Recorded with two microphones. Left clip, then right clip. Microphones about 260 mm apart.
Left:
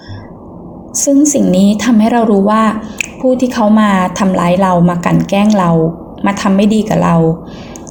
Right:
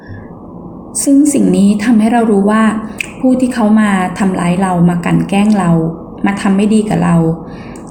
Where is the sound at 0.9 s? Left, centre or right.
Left.